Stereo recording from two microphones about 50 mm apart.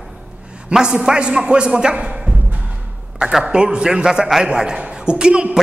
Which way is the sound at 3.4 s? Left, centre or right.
Centre.